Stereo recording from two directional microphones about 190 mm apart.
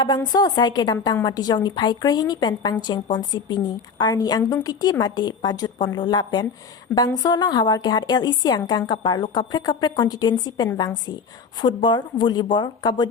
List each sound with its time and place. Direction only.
0.3 s a woman's voice: 20° left (ahead or behind)